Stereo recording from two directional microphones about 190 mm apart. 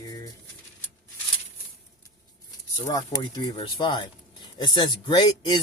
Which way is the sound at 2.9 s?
20° left (ahead or behind).